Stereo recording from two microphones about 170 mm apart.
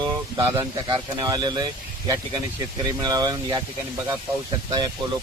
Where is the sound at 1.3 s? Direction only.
25° right (ahead or behind).